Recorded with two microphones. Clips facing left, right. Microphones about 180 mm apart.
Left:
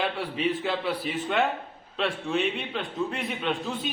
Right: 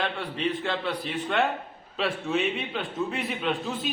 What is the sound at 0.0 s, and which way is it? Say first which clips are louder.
A man's voice: left 1 dB; 5° left (ahead or behind).